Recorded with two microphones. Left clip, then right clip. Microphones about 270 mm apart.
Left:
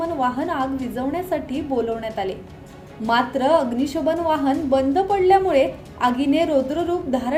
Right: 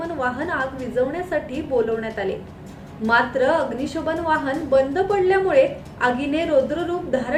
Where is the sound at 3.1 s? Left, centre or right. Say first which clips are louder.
Even; left.